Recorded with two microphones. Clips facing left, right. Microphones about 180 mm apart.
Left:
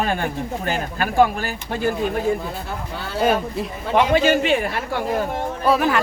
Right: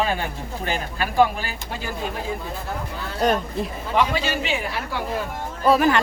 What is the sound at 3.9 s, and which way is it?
Speech, 50° left (ahead or behind).